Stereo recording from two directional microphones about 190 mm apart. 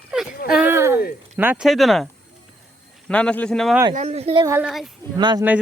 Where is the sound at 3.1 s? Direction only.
5° left (ahead or behind).